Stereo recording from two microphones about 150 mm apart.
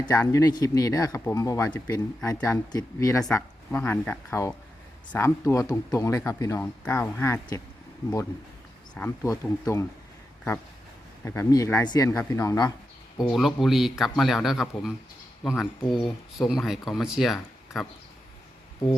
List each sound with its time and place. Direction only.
0.0 s speech: 25° left (ahead or behind)
9.0 s speech: 20° left (ahead or behind)
11.3 s speech: 20° left (ahead or behind)
13.3 s speech: centre (ahead or behind)